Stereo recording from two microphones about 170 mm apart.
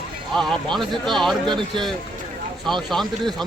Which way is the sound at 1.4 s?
30° right (ahead or behind).